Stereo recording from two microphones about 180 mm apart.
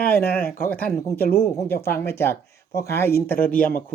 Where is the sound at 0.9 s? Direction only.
15° left (ahead or behind).